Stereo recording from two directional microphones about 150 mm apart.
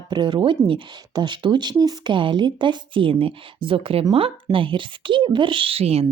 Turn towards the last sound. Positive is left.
turn(degrees=-40)  # may be behind; listen again after turning